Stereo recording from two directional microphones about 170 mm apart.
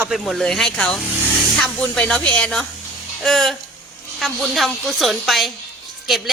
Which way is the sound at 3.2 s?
Centre (ahead or behind).